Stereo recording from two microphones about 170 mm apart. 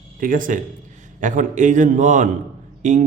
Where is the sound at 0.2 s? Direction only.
55° right (ahead or behind).